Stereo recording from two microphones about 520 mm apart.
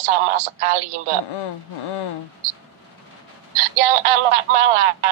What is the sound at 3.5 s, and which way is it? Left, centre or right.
A woman's voice, right.